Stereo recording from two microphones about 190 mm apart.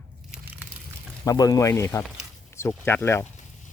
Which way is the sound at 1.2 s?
20° left (ahead or behind).